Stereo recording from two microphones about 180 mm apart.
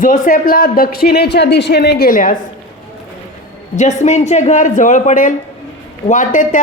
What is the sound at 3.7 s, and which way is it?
Speech, 40° left (ahead or behind).